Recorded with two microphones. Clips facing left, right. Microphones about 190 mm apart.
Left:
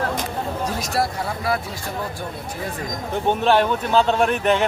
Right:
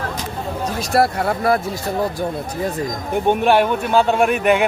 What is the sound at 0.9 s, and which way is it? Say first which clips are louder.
Speech: right 9 dB; 60° right (ahead or behind).